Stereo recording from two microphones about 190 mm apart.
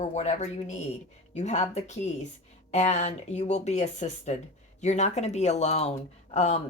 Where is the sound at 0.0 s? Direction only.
35° left (ahead or behind).